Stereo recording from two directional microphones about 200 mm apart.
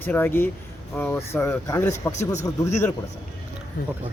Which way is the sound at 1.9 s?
35° left (ahead or behind).